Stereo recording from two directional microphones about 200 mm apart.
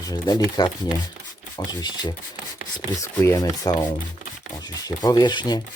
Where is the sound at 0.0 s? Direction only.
20° left (ahead or behind).